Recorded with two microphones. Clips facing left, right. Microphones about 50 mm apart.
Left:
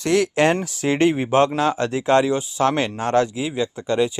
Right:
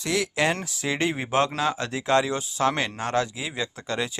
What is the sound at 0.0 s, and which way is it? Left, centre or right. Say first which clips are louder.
Speech: left 7 dB; left.